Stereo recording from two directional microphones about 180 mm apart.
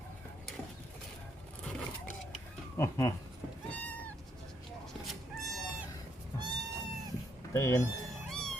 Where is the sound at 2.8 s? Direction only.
15° left (ahead or behind).